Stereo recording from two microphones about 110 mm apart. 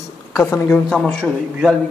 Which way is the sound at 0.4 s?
20° left (ahead or behind).